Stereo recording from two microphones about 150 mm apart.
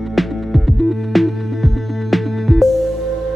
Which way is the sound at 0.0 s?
Centre (ahead or behind).